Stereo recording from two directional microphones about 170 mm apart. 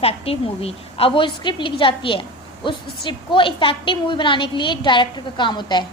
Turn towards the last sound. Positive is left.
turn(degrees=25)  # may be behind; listen again after turning